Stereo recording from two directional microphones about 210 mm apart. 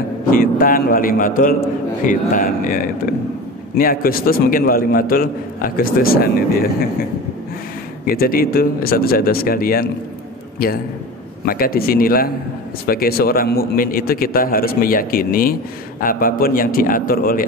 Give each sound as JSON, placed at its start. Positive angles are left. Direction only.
{"t": 0.3, "sound": "a man's voice", "side_deg": 45}
{"t": 8.0, "sound": "a man's voice", "side_deg": 45}
{"t": 11.4, "sound": "a man's voice", "side_deg": 45}